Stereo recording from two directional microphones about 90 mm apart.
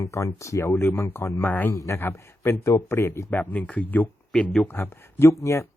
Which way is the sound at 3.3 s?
20° left (ahead or behind).